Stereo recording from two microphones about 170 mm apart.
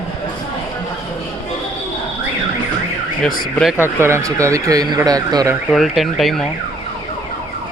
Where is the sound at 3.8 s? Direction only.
15° right (ahead or behind).